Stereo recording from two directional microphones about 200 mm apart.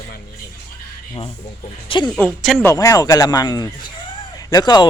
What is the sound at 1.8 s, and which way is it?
Speech, 25° left (ahead or behind).